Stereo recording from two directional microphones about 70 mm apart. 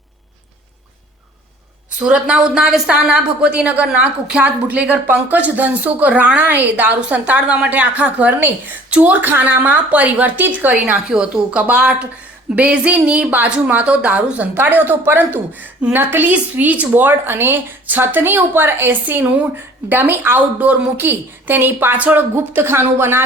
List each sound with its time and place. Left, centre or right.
2.0 s a woman's voice: centre; by 10.9 s right
11.1 s a woman's voice: centre; by 23.2 s right